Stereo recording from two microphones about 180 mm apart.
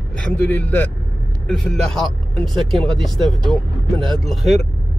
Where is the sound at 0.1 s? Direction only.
5° left (ahead or behind).